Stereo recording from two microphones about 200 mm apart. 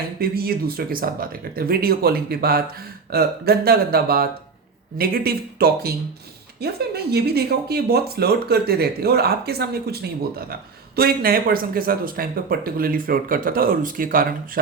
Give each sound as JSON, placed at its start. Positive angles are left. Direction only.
{"t": 0.2, "sound": "speech", "side_deg": -50}